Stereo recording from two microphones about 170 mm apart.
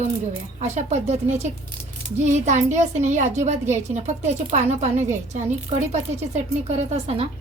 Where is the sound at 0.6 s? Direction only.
40° right (ahead or behind).